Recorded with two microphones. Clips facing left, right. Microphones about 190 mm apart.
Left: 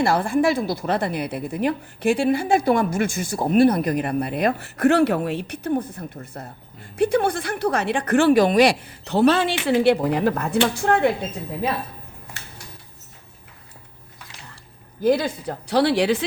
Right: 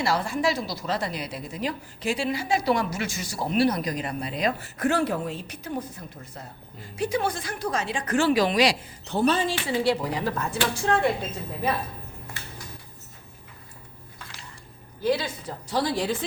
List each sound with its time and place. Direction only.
0.0 s a woman's voice: 55° left (ahead or behind)
15.0 s a woman's voice: 50° left (ahead or behind); by 16.2 s 80° left